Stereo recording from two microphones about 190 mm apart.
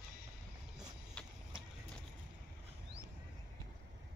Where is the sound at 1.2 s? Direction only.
5° left (ahead or behind).